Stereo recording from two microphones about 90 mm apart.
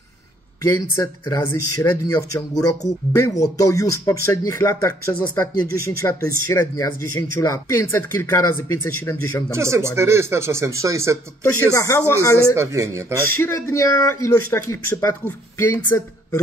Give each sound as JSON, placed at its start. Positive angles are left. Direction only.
{"t": 0.7, "sound": "speech", "side_deg": 40}
{"t": 7.3, "sound": "speech", "side_deg": 40}
{"t": 9.5, "sound": "speech", "side_deg": -30}
{"t": 11.4, "sound": "speech", "side_deg": 35}
{"t": 12.5, "sound": "speech", "side_deg": -35}
{"t": 13.5, "sound": "speech", "side_deg": 35}